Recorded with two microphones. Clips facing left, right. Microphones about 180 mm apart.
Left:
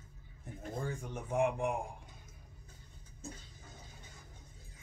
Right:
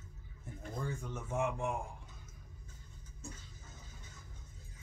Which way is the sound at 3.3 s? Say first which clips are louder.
Left 2 dB; 35° left (ahead or behind).